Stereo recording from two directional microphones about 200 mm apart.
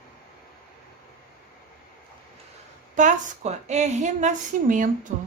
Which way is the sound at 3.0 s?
35° right (ahead or behind).